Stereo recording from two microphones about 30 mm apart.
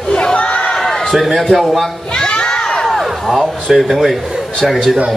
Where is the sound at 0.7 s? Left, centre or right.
Centre.